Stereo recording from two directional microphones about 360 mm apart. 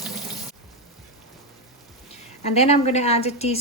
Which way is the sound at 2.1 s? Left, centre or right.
Centre.